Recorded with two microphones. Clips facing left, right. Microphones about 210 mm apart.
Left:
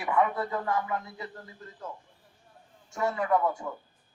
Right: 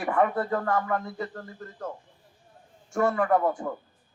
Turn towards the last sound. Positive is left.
turn(degrees=-50)  # may be behind; listen again after turning